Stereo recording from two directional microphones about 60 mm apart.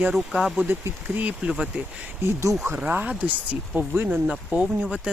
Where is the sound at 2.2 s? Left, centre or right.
Right.